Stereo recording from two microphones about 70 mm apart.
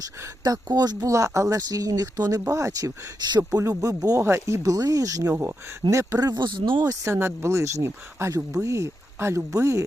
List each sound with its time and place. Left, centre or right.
0.4 s speech: right
1.1 s speech: right
2.5 s speech: right
3.2 s speech: right
3.7 s speech: right
4.2 s speech: right
7.0 s speech: right